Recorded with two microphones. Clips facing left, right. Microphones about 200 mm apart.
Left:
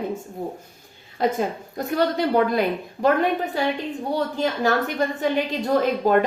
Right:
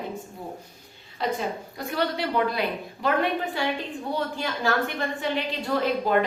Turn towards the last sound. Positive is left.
turn(degrees=50)  # may be behind; listen again after turning